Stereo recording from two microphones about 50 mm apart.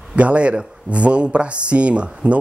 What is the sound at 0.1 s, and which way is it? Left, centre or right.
A man's voice, right.